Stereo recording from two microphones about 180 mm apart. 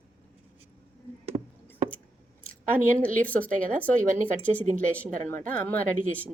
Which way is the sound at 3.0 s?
10° left (ahead or behind).